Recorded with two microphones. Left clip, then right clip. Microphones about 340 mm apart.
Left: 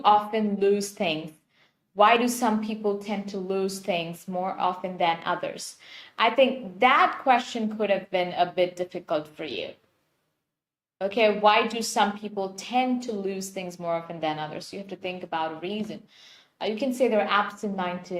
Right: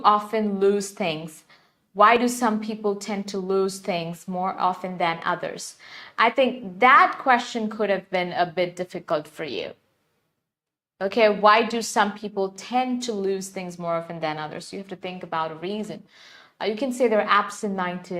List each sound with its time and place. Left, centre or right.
0.0 s a woman's voice: right
10.9 s a woman's voice: right